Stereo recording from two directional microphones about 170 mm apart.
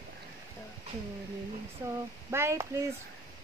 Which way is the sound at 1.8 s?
15° right (ahead or behind).